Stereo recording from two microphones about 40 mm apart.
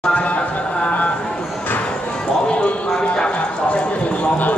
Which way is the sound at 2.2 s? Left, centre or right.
Left.